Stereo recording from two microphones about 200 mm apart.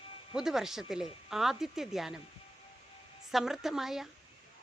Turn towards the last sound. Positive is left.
turn(degrees=0)  # may be behind; listen again after turning